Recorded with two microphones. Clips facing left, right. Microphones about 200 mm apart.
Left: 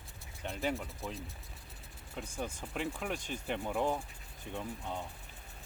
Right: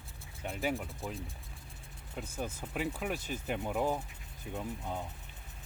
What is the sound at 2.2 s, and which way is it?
Speech, 5° right (ahead or behind).